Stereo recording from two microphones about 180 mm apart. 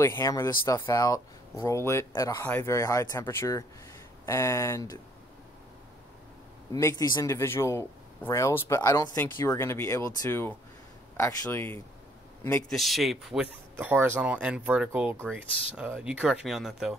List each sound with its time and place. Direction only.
0.0 s speech: 15° left (ahead or behind)
6.7 s speech: 20° left (ahead or behind)
12.6 s speech: centre (ahead or behind)